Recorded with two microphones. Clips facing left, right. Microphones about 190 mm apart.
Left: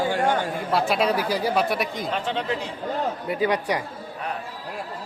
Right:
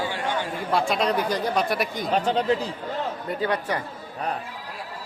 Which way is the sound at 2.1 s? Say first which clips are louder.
Right 8 dB; 40° right (ahead or behind).